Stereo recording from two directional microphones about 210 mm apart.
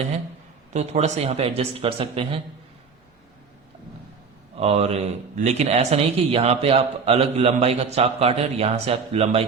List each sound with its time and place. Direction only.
0.7 s a man's voice: 35° right (ahead or behind)
4.6 s a man's voice: 30° right (ahead or behind)